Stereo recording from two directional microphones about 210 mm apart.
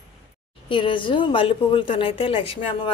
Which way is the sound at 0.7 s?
25° left (ahead or behind).